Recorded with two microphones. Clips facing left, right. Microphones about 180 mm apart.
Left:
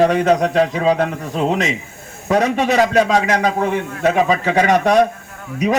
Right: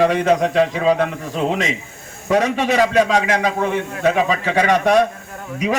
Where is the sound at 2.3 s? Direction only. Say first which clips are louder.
Left 1 dB; 45° left (ahead or behind).